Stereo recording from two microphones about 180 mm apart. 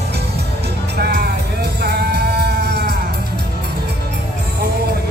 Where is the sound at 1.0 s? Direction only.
60° right (ahead or behind).